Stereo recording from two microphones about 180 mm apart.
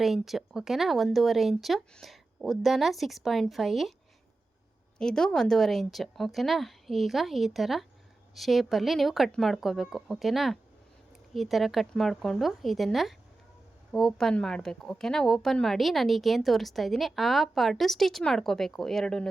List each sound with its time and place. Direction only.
0.0 s a woman's voice: centre (ahead or behind)
4.9 s a woman's voice: 5° left (ahead or behind)